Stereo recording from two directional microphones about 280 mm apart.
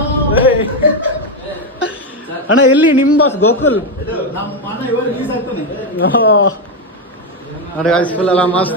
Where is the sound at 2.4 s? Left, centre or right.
Left.